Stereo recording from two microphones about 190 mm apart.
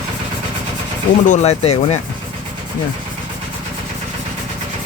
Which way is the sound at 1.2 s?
40° left (ahead or behind).